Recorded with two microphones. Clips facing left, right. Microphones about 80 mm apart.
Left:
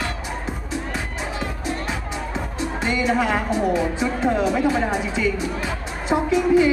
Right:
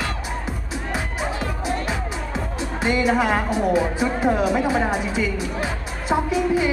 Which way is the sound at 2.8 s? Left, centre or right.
Centre.